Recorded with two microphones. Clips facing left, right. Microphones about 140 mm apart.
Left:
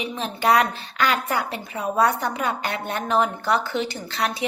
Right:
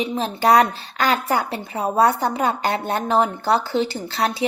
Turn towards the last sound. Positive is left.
turn(degrees=-30)  # may be behind; listen again after turning